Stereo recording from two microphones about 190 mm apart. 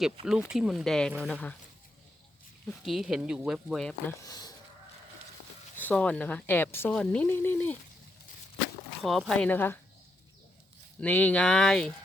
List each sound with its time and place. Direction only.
0.0 s speech: 5° right (ahead or behind)
2.6 s speech: centre (ahead or behind)
4.2 s speech: 20° left (ahead or behind)
5.7 s speech: 10° left (ahead or behind)
9.0 s speech: centre (ahead or behind)
11.0 s speech: 10° left (ahead or behind)